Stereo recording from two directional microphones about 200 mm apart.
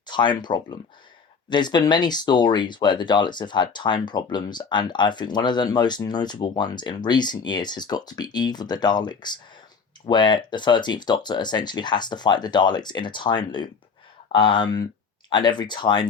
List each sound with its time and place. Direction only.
0.0 s speech: 20° left (ahead or behind)